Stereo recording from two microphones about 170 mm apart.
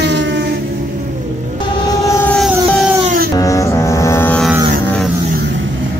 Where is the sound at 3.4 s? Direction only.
20° left (ahead or behind).